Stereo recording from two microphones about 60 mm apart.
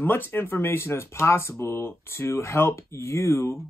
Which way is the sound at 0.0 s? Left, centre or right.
Left.